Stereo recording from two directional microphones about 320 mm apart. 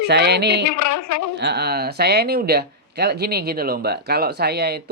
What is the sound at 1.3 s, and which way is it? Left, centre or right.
Speech, right.